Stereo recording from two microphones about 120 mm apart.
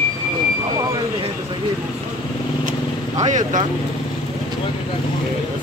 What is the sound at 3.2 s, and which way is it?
Speech, 90° right.